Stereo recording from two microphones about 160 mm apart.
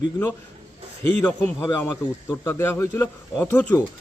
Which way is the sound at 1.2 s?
10° left (ahead or behind).